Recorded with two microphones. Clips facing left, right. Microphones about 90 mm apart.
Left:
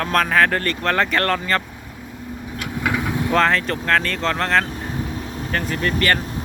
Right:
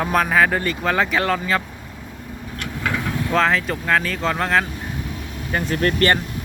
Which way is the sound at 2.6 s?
10° left (ahead or behind).